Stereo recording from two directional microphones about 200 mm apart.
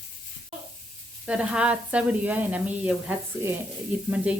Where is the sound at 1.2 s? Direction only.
5° right (ahead or behind).